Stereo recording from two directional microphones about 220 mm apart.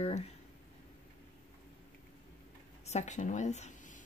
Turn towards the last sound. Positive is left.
turn(degrees=35)  # may be behind; listen again after turning